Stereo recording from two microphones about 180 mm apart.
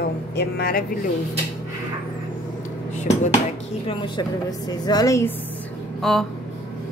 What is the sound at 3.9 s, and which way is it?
A woman's voice, 25° left (ahead or behind).